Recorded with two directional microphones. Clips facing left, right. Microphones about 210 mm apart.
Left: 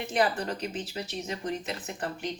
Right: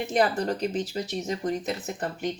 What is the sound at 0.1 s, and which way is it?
Speech, 40° right (ahead or behind).